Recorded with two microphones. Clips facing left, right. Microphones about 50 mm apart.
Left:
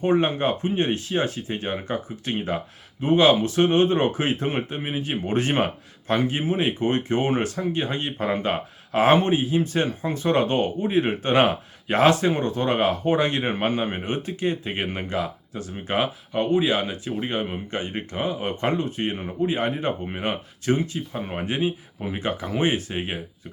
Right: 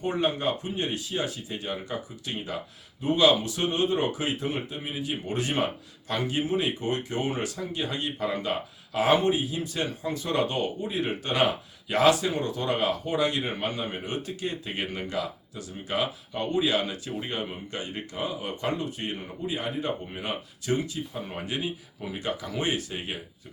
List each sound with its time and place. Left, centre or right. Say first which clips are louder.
0.0 s speech: left 6 dB; left